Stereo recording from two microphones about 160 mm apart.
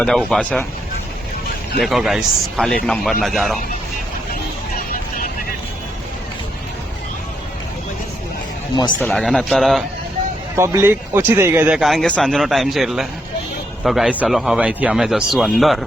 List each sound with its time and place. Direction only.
0.0 s speech: 5° left (ahead or behind)
1.8 s speech: centre (ahead or behind)
9.0 s speech: 5° left (ahead or behind)
10.5 s speech: 15° right (ahead or behind); by 15.8 s centre (ahead or behind)